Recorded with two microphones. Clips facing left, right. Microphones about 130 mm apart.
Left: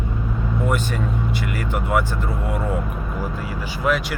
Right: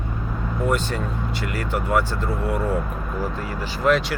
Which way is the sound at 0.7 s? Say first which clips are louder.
Right 1 dB; 15° left (ahead or behind).